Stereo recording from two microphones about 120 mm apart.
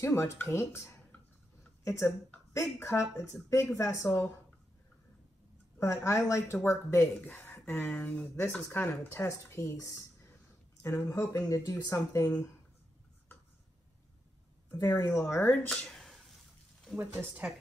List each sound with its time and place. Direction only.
0.0 s speech: 20° left (ahead or behind)
5.8 s speech: 20° left (ahead or behind)
14.7 s speech: 20° left (ahead or behind); by 16.3 s 5° left (ahead or behind)
16.9 s a woman's voice: 15° right (ahead or behind)